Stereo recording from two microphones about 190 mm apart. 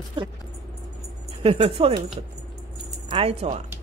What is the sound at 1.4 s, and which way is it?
Speech, 30° right (ahead or behind).